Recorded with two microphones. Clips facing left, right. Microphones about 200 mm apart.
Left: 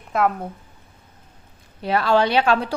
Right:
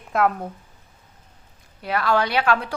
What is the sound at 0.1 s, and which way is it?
Speech, centre (ahead or behind).